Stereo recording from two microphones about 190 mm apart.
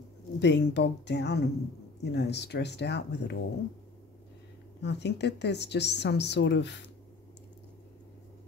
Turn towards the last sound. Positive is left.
turn(degrees=70)  # may be behind; listen again after turning